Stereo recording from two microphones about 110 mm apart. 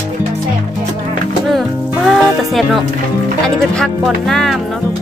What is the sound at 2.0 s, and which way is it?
Speech, centre (ahead or behind).